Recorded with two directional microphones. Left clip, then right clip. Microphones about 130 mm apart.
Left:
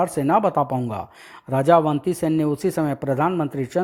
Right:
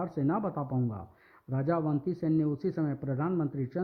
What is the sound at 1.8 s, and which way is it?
Speech, 30° left (ahead or behind).